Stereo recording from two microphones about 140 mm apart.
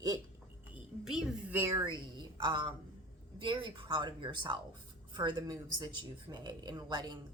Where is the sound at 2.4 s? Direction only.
35° right (ahead or behind).